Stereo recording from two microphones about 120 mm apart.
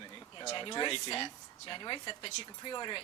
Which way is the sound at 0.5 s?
40° left (ahead or behind).